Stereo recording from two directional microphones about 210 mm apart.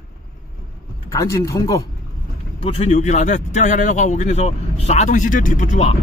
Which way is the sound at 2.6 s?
30° left (ahead or behind).